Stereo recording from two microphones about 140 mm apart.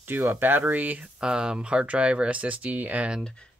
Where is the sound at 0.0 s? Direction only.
15° right (ahead or behind).